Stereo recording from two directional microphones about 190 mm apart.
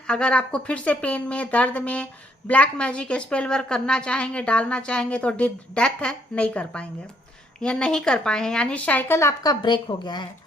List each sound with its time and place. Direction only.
0.1 s a woman's voice: 5° left (ahead or behind); by 10.2 s 25° left (ahead or behind)